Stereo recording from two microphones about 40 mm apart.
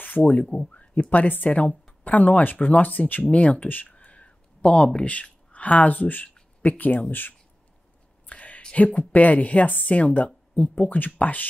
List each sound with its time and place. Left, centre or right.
0.2 s speech: left
0.7 s a sound: left
1.1 s speech: left
3.6 s speech: left
3.9 s a sound: left
5.5 s speech: left
8.3 s whispering: left
8.7 s speech: left